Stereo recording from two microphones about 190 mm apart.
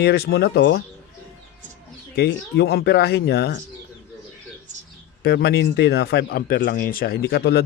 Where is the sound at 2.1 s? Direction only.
55° left (ahead or behind).